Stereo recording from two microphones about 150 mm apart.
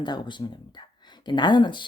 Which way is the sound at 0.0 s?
30° left (ahead or behind).